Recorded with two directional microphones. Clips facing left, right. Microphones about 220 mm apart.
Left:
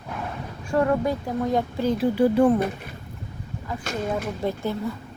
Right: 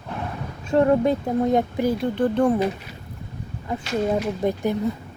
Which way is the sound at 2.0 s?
5° left (ahead or behind).